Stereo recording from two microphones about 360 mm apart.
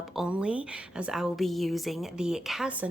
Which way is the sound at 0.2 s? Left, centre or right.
Centre.